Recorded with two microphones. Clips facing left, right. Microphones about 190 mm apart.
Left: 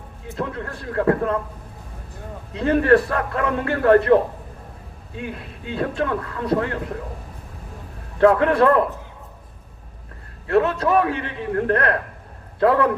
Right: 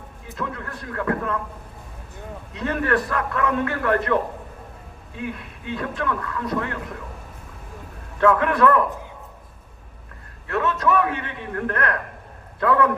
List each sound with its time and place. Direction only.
0.3 s speech: 30° left (ahead or behind)
2.5 s speech: 30° left (ahead or behind)
8.2 s speech: 35° left (ahead or behind)
10.4 s a man's voice: 35° left (ahead or behind)